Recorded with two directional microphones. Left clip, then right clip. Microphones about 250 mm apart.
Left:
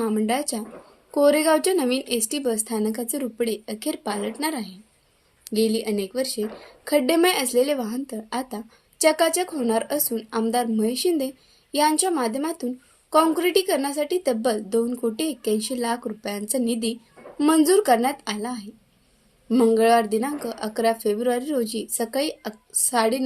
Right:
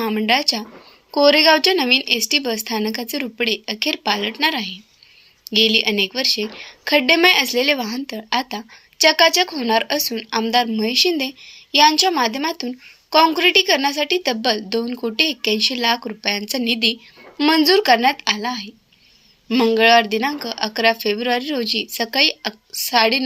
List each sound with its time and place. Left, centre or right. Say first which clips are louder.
0.0 s a woman's voice: right 6 dB; centre